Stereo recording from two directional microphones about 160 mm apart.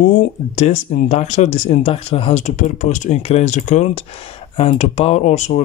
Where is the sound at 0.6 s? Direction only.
45° left (ahead or behind).